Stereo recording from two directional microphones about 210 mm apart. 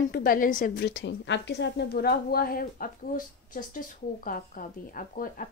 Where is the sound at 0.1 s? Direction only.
40° left (ahead or behind).